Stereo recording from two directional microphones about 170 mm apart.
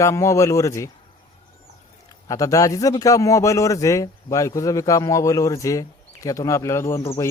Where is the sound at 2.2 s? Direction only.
20° left (ahead or behind).